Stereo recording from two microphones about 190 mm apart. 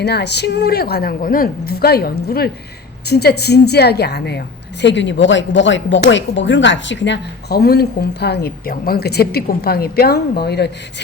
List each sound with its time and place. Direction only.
0.0 s a woman's voice: 60° left (ahead or behind)